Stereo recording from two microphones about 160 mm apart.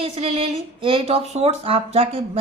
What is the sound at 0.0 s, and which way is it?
A woman's voice, 40° right (ahead or behind).